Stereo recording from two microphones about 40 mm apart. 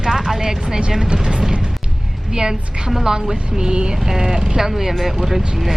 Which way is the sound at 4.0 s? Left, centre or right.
Centre.